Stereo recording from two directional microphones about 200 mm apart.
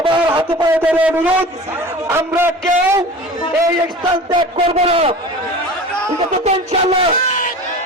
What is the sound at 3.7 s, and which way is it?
A man's voice, 25° right (ahead or behind).